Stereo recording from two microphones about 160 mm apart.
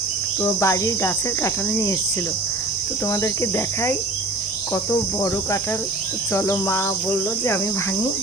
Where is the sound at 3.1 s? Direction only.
15° left (ahead or behind).